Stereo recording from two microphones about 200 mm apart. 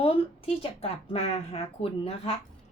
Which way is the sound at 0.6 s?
30° left (ahead or behind).